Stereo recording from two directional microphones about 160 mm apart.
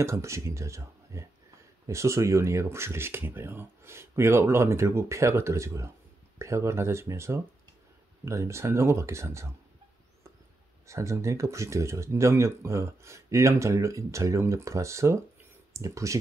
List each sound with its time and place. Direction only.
0.0 s speech: 20° right (ahead or behind)
10.9 s speech: 20° right (ahead or behind)